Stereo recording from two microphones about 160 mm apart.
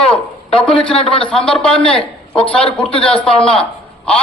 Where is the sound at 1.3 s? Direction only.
5° left (ahead or behind).